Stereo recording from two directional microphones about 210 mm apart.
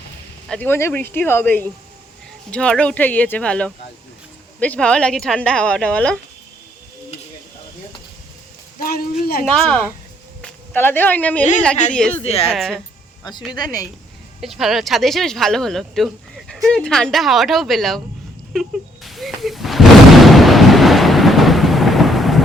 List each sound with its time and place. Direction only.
0.4 s speech: 5° left (ahead or behind)
8.8 s speech: 45° left (ahead or behind)
9.5 s speech: 5° left (ahead or behind)
12.2 s a woman's voice: 30° left (ahead or behind)
12.5 s speech: centre (ahead or behind)
13.5 s speech: 20° left (ahead or behind)
14.4 s speech: centre (ahead or behind)
19.0 s a sound: centre (ahead or behind)